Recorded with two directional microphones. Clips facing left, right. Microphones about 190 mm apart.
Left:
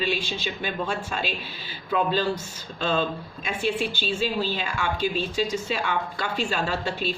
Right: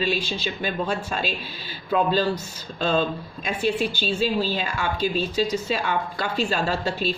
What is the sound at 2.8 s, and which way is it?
A woman's voice, 40° right (ahead or behind).